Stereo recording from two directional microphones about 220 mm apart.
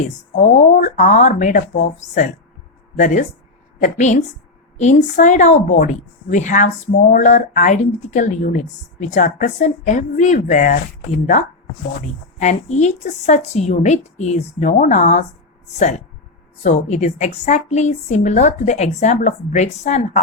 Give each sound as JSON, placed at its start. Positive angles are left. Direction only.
{"t": 0.0, "sound": "speech", "side_deg": 35}
{"t": 12.4, "sound": "speech", "side_deg": 30}
{"t": 16.6, "sound": "speech", "side_deg": 30}